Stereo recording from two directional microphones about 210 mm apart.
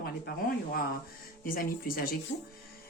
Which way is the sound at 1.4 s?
45° left (ahead or behind).